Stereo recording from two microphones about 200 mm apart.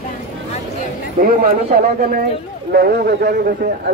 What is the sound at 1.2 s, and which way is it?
Speech, 45° right (ahead or behind).